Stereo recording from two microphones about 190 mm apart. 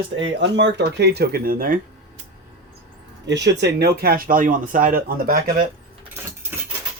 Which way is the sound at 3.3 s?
70° right (ahead or behind).